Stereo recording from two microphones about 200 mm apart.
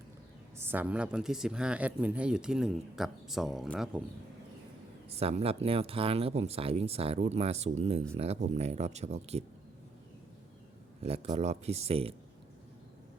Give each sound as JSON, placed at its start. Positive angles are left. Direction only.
{"t": 0.5, "sound": "speech", "side_deg": -10}
{"t": 5.0, "sound": "speech", "side_deg": -30}
{"t": 11.0, "sound": "speech", "side_deg": -30}